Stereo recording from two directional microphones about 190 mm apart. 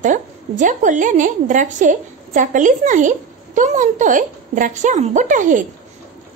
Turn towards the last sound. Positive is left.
turn(degrees=-40)  # may be behind; listen again after turning